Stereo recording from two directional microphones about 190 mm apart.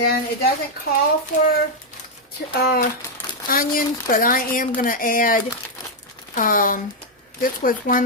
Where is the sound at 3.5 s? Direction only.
50° left (ahead or behind).